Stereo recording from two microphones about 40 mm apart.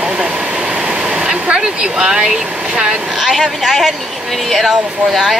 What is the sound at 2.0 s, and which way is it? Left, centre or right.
Speech, centre.